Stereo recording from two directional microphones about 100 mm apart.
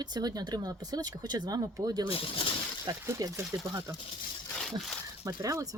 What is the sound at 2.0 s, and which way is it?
Speech, 70° left (ahead or behind).